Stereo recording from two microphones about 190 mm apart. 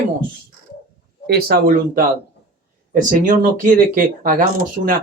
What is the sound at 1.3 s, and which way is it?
Speech, 55° right (ahead or behind).